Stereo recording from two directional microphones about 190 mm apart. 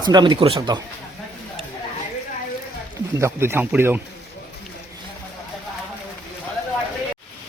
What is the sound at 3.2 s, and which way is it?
Speech, 15° right (ahead or behind).